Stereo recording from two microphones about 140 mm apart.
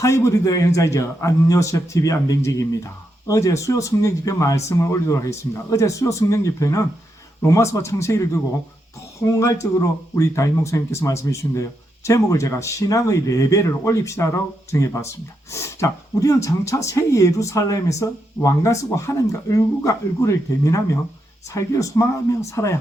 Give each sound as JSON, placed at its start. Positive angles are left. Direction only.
{"t": 0.0, "sound": "a man's voice", "side_deg": 20}
{"t": 9.4, "sound": "a man's voice", "side_deg": 20}